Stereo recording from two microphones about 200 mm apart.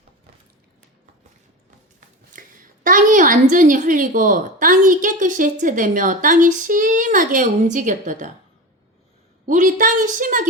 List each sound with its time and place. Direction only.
2.3 s a sound: 40° right (ahead or behind)
3.5 s a woman's voice: 40° right (ahead or behind)
9.5 s a woman's voice: 40° right (ahead or behind)